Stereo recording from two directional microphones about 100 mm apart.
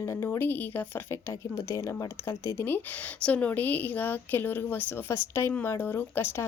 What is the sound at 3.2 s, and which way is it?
Speech, 15° left (ahead or behind).